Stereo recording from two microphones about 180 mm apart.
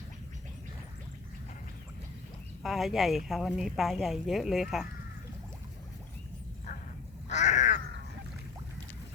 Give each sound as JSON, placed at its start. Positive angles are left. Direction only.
{"t": 2.6, "sound": "speech", "side_deg": 0}
{"t": 7.3, "sound": "crow", "side_deg": 40}